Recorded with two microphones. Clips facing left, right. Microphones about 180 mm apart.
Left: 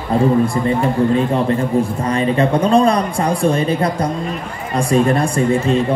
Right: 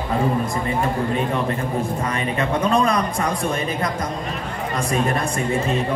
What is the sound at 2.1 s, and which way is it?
Speech, 30° left (ahead or behind).